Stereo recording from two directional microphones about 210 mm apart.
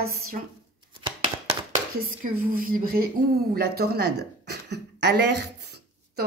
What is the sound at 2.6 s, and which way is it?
Speech, 45° right (ahead or behind).